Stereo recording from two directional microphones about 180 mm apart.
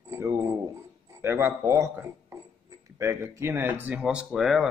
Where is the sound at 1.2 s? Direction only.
15° right (ahead or behind).